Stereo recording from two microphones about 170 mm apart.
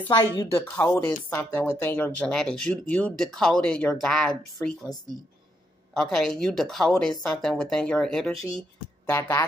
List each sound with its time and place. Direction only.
0.1 s speech: 20° left (ahead or behind); by 4.7 s 5° left (ahead or behind)
5.9 s speech: centre (ahead or behind)
9.1 s speech: 15° left (ahead or behind)